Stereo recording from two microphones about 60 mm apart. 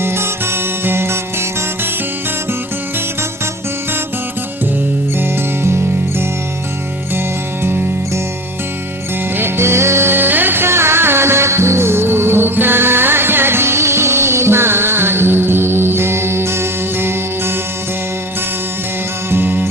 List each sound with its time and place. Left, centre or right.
0.0 s music: right
7.6 s music: right
9.3 s music: right
19.3 s music: right